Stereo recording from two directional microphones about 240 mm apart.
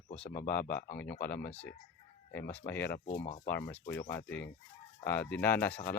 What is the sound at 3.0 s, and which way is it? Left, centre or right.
Speech, left.